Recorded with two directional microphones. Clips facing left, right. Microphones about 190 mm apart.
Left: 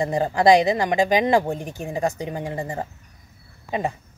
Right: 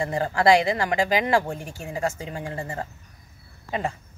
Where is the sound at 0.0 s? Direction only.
20° left (ahead or behind).